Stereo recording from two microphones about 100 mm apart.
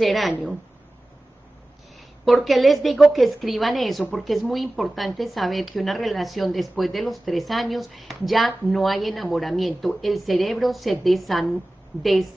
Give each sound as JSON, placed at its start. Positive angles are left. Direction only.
{"t": 0.0, "sound": "speech", "side_deg": 0}
{"t": 2.2, "sound": "speech", "side_deg": 0}